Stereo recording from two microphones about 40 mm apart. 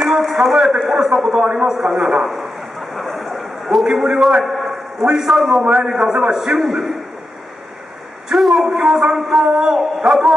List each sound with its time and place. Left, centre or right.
0.0 s a sound: centre
0.8 s speech: centre
2.9 s a sound: centre
4.0 s speech: centre
4.4 s a sound: centre
5.0 s speech: centre
5.4 s a man's voice: centre
5.7 s speech: centre
8.3 s a man's voice: centre